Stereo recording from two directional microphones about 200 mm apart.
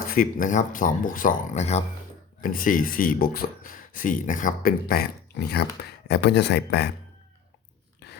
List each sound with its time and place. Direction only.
0.1 s speech: 45° left (ahead or behind)
6.1 s speech: 60° left (ahead or behind)